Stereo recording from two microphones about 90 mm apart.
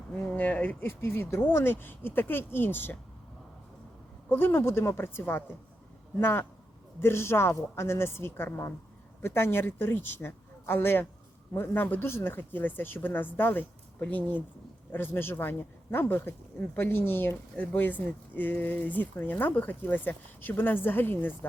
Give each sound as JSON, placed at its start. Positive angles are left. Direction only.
{"t": 0.3, "sound": "speech", "side_deg": 15}
{"t": 4.3, "sound": "speech", "side_deg": 25}